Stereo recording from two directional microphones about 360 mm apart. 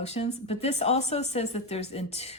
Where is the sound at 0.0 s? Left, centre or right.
Centre.